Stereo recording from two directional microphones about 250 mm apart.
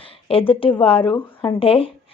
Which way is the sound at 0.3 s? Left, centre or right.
Left.